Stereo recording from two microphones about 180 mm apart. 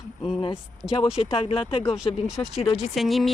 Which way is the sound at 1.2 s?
30° left (ahead or behind).